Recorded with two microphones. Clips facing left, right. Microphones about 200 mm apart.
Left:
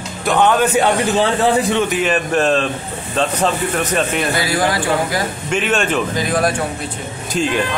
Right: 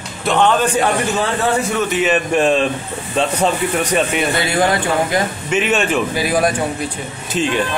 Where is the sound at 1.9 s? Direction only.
5° right (ahead or behind).